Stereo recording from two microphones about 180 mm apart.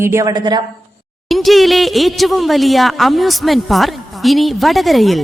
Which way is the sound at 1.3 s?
Centre (ahead or behind).